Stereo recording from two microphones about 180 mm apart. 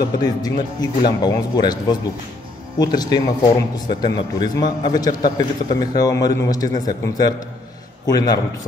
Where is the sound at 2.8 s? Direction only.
20° left (ahead or behind).